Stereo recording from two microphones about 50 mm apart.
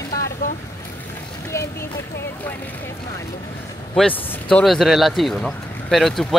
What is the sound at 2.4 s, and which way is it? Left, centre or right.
Speech, left.